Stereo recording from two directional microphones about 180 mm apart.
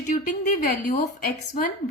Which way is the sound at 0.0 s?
45° left (ahead or behind).